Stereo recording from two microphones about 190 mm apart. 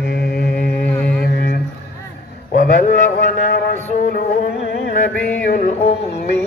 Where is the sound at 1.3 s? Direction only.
50° left (ahead or behind).